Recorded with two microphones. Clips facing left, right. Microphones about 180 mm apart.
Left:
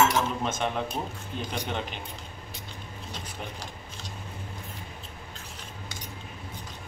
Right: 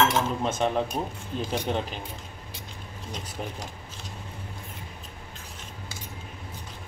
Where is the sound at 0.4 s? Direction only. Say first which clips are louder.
Right 4 dB; 35° right (ahead or behind).